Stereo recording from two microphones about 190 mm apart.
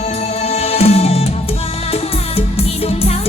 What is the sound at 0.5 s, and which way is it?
Music, 35° left (ahead or behind).